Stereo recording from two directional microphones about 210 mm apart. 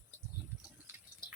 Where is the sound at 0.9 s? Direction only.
10° right (ahead or behind).